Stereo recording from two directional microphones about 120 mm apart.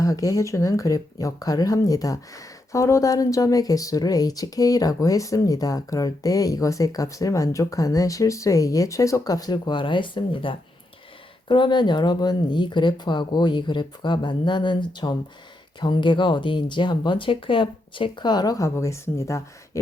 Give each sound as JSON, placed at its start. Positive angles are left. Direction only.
{"t": 0.0, "sound": "speech", "side_deg": 30}